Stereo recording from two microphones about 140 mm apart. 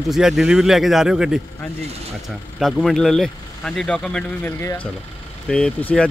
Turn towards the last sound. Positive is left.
turn(degrees=10)  # may be behind; listen again after turning